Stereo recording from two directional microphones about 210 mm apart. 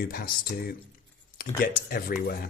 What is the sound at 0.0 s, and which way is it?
Speech, 45° left (ahead or behind).